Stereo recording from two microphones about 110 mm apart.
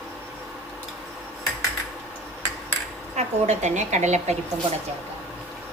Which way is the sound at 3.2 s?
90° right.